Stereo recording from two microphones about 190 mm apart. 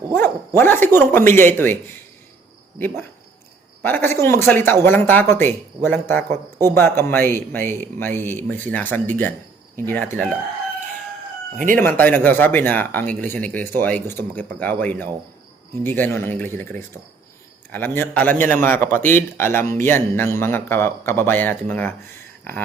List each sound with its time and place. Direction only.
0.1 s a man's voice: 10° left (ahead or behind)
11.5 s speech: 45° right (ahead or behind)
11.8 s a man's voice: 10° left (ahead or behind)